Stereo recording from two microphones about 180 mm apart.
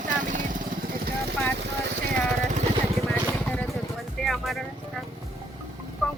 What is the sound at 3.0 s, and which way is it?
Vehicle, 5° left (ahead or behind).